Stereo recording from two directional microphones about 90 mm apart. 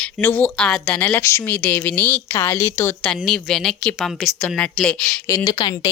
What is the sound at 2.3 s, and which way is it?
Speech, 30° left (ahead or behind).